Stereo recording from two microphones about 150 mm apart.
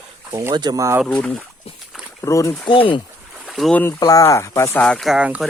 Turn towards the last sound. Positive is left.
turn(degrees=-5)  # may be behind; listen again after turning